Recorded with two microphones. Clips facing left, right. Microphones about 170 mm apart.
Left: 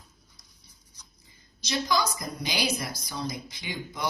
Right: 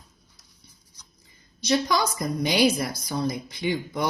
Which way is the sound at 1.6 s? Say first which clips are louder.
Right 4 dB; 55° right (ahead or behind).